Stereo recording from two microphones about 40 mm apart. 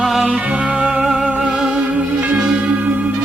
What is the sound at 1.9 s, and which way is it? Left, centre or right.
Music, right.